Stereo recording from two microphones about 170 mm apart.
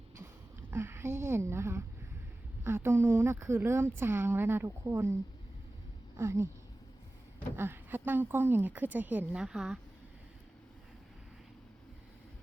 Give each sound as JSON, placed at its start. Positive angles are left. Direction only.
{"t": 0.7, "sound": "a sound", "side_deg": -15}
{"t": 2.6, "sound": "speech", "side_deg": -15}
{"t": 6.1, "sound": "speech", "side_deg": -15}
{"t": 7.5, "sound": "speech", "side_deg": -15}